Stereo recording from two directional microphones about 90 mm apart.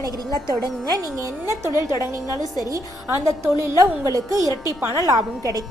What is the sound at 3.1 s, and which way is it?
A woman's voice, 35° right (ahead or behind).